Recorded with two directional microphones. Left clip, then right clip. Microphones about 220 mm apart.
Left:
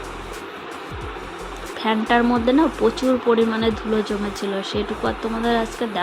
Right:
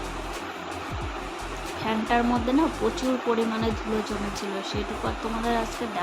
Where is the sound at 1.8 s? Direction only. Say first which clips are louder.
Left 6 dB; 20° left (ahead or behind).